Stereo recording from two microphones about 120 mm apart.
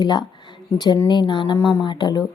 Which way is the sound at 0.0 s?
35° left (ahead or behind).